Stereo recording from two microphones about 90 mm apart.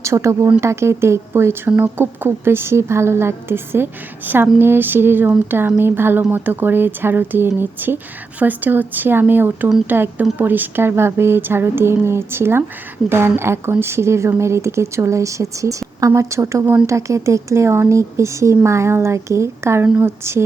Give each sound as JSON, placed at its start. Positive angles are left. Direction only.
{"t": 0.0, "sound": "a woman's voice", "side_deg": -35}